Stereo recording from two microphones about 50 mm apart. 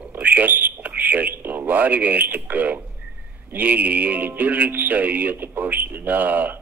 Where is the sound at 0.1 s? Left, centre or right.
Right.